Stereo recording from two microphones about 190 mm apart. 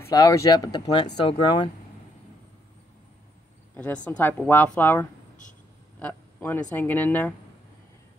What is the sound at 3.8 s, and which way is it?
Speech, 10° left (ahead or behind).